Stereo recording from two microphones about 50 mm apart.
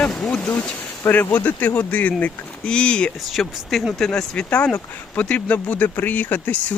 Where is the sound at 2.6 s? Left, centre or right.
Centre.